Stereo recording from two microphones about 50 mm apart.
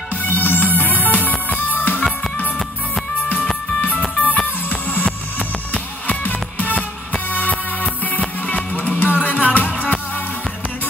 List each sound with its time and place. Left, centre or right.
0.2 s music: left
4.1 s music: left
8.5 s music: left